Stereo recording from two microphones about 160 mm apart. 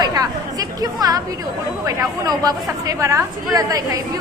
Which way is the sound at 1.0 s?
25° right (ahead or behind).